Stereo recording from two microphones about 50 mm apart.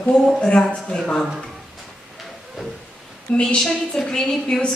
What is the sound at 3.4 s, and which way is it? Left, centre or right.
A woman's voice, centre.